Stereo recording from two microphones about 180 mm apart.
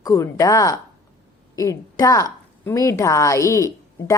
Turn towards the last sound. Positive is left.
turn(degrees=15)  # may be behind; listen again after turning